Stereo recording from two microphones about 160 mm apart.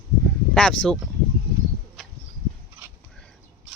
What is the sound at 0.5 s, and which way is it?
Speech, 5° left (ahead or behind).